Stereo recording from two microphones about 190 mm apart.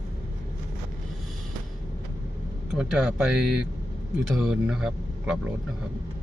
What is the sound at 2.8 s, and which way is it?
Speech, 5° right (ahead or behind).